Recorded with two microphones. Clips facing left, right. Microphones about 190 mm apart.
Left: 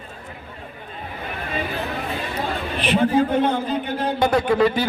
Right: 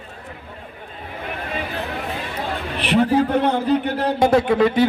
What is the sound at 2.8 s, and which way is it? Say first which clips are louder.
A man's voice: right 1 dB; 70° right (ahead or behind).